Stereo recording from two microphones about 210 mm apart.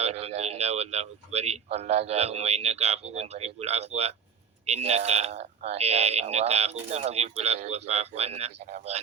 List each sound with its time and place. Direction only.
0.0 s speech: 30° right (ahead or behind)